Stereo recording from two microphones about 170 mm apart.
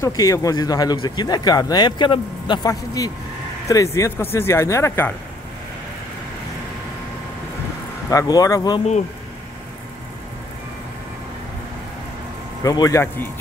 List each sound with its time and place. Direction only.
0.0 s speech: 20° left (ahead or behind)
8.1 s speech: 20° left (ahead or behind)
12.6 s speech: 20° left (ahead or behind)